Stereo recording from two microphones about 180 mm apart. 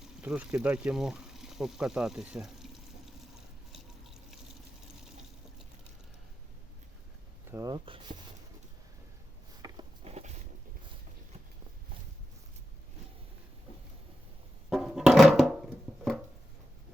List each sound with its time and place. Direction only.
0.2 s speech: 5° right (ahead or behind)
3.7 s water: centre (ahead or behind)
7.5 s speech: 20° right (ahead or behind)
9.6 s a sound: 20° right (ahead or behind)
10.0 s walk: 35° right (ahead or behind)
14.7 s a sound: centre (ahead or behind)